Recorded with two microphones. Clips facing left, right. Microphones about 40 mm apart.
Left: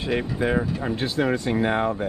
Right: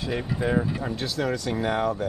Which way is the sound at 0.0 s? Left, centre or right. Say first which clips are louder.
Left 3 dB; left.